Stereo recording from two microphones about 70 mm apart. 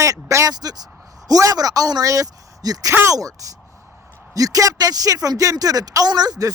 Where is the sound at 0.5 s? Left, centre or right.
Right.